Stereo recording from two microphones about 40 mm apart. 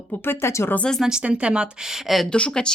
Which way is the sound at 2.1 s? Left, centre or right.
Centre.